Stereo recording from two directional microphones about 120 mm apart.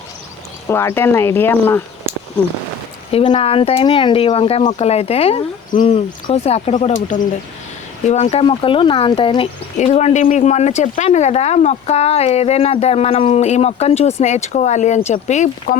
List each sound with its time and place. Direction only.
0.7 s speech: 20° left (ahead or behind)
3.1 s speech: 55° left (ahead or behind); by 7.2 s 90° left
8.0 s speech: 70° left (ahead or behind)
8.4 s speech: 45° left (ahead or behind)
9.7 s speech: 70° left (ahead or behind)